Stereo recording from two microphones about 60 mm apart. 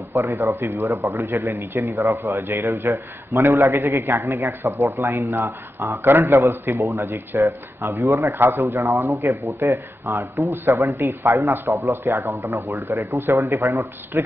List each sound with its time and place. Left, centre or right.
0.1 s a man's voice: right
1.7 s a man's voice: right
2.0 s a man's voice: right
6.0 s a man's voice: right
6.8 s a man's voice: right
7.1 s a man's voice: right
8.0 s a man's voice: right
8.3 s a man's voice: right
10.5 s speech: right
10.8 s a man's voice: right